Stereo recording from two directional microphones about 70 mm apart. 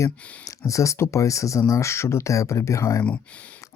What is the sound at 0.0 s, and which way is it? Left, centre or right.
Speech, left.